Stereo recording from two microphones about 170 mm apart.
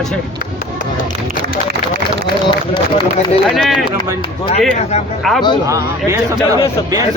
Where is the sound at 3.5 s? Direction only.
Centre (ahead or behind).